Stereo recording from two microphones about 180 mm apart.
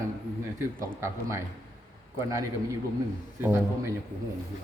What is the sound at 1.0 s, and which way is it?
Speech, 15° right (ahead or behind).